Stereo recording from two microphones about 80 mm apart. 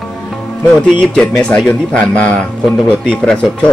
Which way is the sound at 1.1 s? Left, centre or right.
Centre.